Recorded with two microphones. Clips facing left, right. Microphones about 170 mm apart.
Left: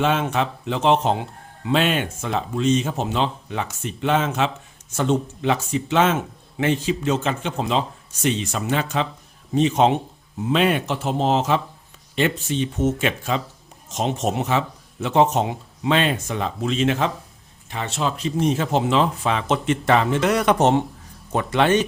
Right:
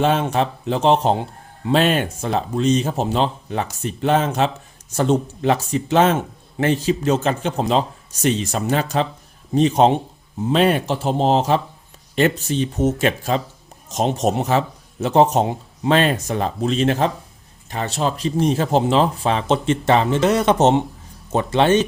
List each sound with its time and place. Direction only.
0.0 s speech: 35° right (ahead or behind)